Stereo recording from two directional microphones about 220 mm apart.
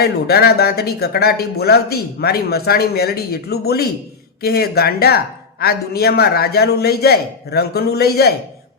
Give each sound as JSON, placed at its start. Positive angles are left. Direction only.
{"t": 0.0, "sound": "speech", "side_deg": 45}